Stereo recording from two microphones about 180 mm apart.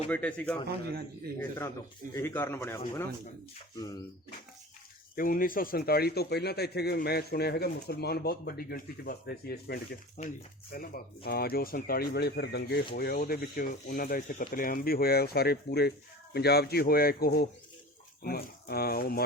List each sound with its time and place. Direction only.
0.1 s speech: 5° left (ahead or behind)
5.1 s speech: 50° left (ahead or behind)